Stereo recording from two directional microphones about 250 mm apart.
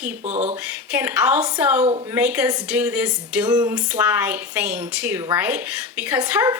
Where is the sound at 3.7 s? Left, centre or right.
Centre.